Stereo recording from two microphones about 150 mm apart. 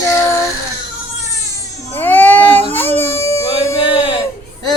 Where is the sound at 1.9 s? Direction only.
10° left (ahead or behind).